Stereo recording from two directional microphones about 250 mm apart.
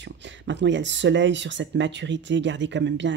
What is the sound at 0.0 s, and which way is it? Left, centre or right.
Speech, right.